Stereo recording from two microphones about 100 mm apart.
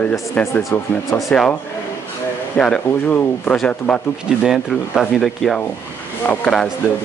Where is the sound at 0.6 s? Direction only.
Centre (ahead or behind).